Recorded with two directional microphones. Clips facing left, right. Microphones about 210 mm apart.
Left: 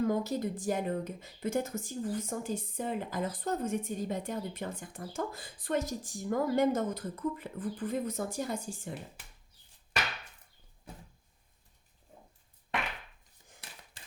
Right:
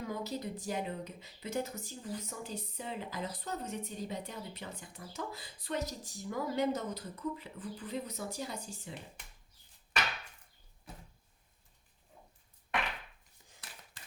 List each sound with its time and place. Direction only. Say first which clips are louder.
0.0 s speech: left 8 dB; 50° left (ahead or behind)